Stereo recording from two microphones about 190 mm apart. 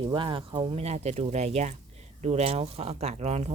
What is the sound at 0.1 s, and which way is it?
Speech, 25° right (ahead or behind).